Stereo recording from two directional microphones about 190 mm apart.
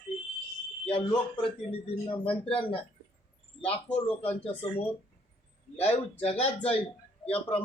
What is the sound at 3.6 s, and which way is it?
Speech, 10° left (ahead or behind).